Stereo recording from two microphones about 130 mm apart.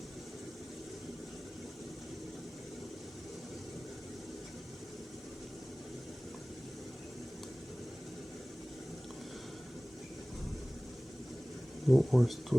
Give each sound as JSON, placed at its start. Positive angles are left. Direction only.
{"t": 11.9, "sound": "speech", "side_deg": 0}